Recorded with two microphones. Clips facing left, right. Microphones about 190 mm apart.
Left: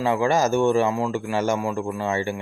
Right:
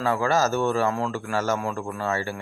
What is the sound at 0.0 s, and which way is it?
Speech, 15° left (ahead or behind).